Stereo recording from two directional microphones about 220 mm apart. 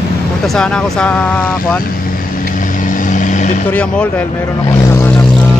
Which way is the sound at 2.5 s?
35° left (ahead or behind).